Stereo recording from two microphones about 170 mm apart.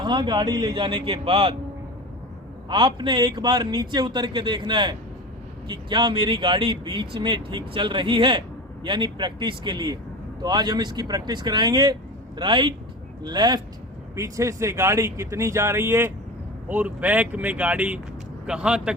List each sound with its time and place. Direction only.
0.0 s speech: 25° right (ahead or behind)
2.6 s speech: 30° right (ahead or behind); by 18.9 s 5° right (ahead or behind)